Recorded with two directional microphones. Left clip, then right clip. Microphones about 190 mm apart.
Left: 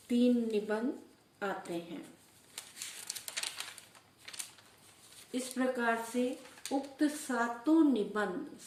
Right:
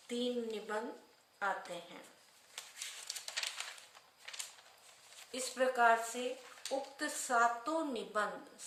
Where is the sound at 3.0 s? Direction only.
20° left (ahead or behind).